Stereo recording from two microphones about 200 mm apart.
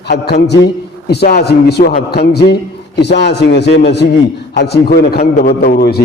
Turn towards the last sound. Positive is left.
turn(degrees=50)  # may be behind; listen again after turning